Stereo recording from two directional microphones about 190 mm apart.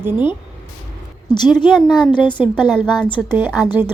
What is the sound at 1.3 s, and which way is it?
A woman's voice, 25° left (ahead or behind).